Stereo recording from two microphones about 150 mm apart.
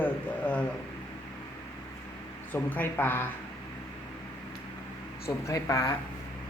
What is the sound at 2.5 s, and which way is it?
Speech, 10° left (ahead or behind).